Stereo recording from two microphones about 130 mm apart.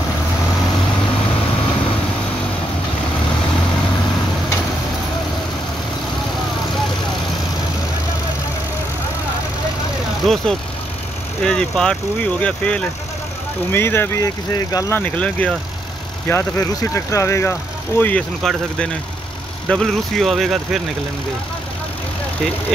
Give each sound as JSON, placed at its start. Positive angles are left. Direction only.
{"t": 10.2, "sound": "speech", "side_deg": 0}
{"t": 15.0, "sound": "speech", "side_deg": 10}
{"t": 18.4, "sound": "speech", "side_deg": 5}